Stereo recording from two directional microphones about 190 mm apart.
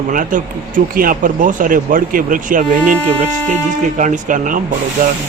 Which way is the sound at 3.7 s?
40° right (ahead or behind).